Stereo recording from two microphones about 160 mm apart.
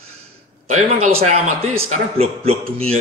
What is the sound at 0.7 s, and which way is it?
A man's voice, 45° right (ahead or behind).